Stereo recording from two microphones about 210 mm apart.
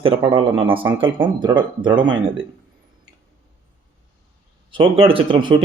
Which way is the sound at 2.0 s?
60° right (ahead or behind).